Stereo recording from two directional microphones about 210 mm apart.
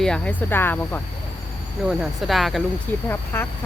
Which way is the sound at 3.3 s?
10° left (ahead or behind).